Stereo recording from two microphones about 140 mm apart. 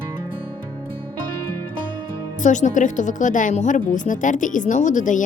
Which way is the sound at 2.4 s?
60° left (ahead or behind).